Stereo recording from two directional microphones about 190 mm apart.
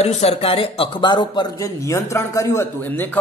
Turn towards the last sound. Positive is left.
turn(degrees=10)  # may be behind; listen again after turning